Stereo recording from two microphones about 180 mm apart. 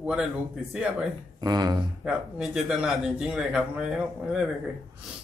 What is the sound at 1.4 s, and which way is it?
Speech, 20° right (ahead or behind).